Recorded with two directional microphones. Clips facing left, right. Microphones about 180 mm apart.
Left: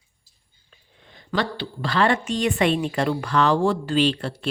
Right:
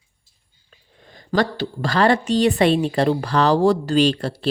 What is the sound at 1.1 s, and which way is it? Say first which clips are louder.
A woman's voice: right 5 dB; 45° right (ahead or behind).